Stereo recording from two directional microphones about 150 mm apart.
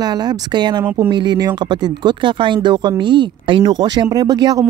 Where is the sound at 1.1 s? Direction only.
30° right (ahead or behind).